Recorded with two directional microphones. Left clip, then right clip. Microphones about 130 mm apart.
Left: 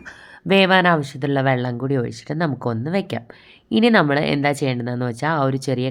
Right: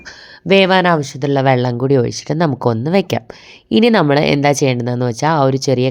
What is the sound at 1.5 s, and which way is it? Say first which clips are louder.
Speech: right 8 dB; 55° right (ahead or behind).